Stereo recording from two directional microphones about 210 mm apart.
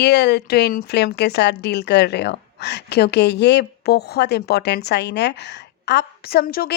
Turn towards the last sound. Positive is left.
turn(degrees=45)  # may be behind; listen again after turning